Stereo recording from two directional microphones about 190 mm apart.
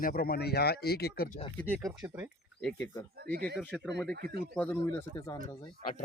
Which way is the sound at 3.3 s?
55° right (ahead or behind).